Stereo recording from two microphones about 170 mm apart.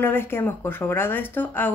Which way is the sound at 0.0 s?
15° left (ahead or behind).